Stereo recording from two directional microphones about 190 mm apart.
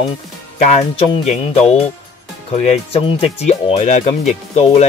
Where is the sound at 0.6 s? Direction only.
35° left (ahead or behind).